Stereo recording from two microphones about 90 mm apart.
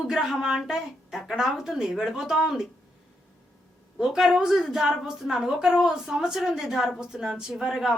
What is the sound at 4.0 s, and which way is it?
A woman's voice, 5° right (ahead or behind).